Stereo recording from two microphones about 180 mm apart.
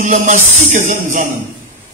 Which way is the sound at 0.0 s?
45° right (ahead or behind).